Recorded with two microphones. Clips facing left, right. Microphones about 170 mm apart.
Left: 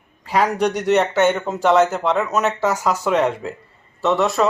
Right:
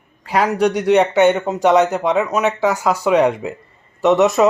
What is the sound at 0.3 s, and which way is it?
Speech, 10° right (ahead or behind).